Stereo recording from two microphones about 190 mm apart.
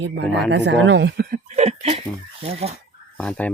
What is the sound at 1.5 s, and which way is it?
Speech, 35° right (ahead or behind).